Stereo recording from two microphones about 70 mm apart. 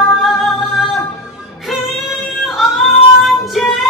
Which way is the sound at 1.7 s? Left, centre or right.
Centre.